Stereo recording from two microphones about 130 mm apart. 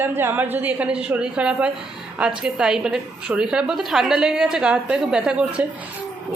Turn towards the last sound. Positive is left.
turn(degrees=-5)  # may be behind; listen again after turning